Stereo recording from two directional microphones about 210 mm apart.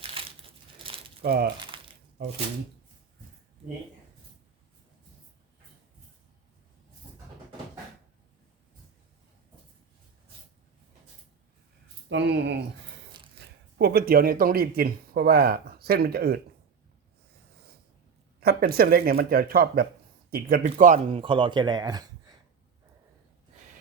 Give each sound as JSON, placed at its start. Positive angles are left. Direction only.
{"t": 0.0, "sound": "crumpling", "side_deg": -25}
{"t": 0.8, "sound": "a sound", "side_deg": -25}
{"t": 1.2, "sound": "speech", "side_deg": -50}
{"t": 1.7, "sound": "a sound", "side_deg": -25}
{"t": 12.0, "sound": "speech", "side_deg": -55}
{"t": 13.7, "sound": "speech", "side_deg": -50}
{"t": 18.3, "sound": "speech", "side_deg": -45}